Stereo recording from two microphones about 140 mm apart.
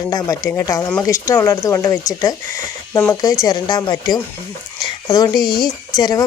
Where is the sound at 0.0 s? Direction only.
25° left (ahead or behind).